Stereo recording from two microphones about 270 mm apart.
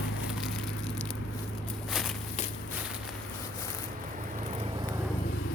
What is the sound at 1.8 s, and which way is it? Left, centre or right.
Walk, centre.